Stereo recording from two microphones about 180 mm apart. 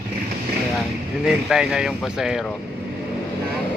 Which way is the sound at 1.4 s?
5° right (ahead or behind).